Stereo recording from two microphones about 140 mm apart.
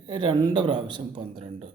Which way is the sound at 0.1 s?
35° right (ahead or behind).